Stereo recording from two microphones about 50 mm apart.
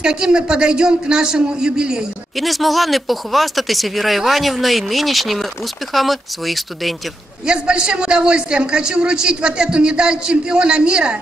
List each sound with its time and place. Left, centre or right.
0.0 s a man's voice: centre
2.3 s speech: centre
7.4 s a man's voice: centre